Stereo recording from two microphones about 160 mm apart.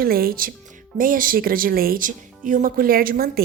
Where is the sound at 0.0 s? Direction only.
70° right (ahead or behind).